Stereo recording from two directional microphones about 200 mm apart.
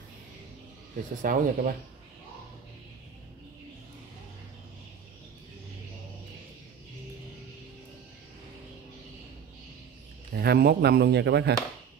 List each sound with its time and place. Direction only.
1.2 s speech: 45° right (ahead or behind)
10.3 s speech: 50° right (ahead or behind)